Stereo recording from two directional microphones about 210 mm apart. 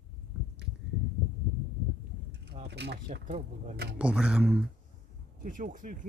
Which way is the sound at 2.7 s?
55° right (ahead or behind).